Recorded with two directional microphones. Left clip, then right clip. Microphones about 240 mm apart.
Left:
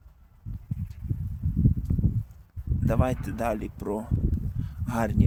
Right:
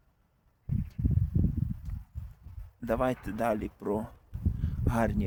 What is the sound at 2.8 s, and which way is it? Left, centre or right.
Speech, centre.